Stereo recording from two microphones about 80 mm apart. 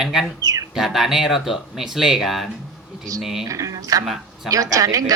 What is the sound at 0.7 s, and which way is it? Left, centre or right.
Speech, centre.